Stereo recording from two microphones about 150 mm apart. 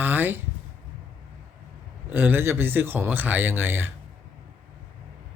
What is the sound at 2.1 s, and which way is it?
Speech, 15° right (ahead or behind).